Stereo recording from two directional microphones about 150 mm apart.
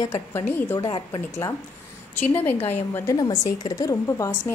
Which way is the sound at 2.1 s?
10° left (ahead or behind).